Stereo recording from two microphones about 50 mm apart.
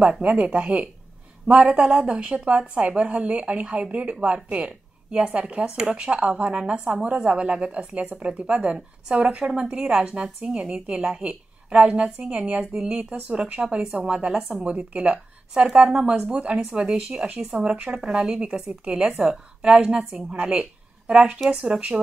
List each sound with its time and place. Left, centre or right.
0.0 s a woman's voice: right
17.7 s a woman's voice: right
18.0 s a woman's voice: centre